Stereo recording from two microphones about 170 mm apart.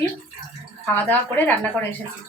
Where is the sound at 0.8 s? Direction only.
10° left (ahead or behind).